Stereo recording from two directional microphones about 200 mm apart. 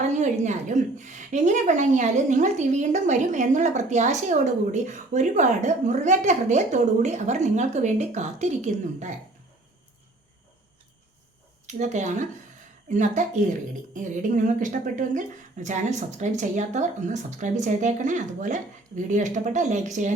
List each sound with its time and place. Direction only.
0.1 s a woman's voice: 35° right (ahead or behind)
11.6 s a woman's voice: 35° right (ahead or behind)